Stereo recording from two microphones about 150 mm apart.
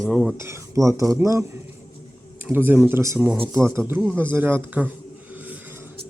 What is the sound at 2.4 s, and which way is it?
Speech, 15° right (ahead or behind).